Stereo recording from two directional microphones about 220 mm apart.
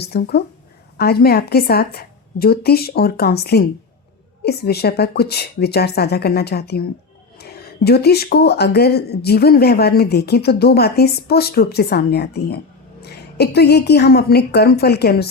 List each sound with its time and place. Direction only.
0.1 s speech: 45° left (ahead or behind)